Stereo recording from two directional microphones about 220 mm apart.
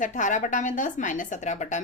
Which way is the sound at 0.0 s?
35° left (ahead or behind).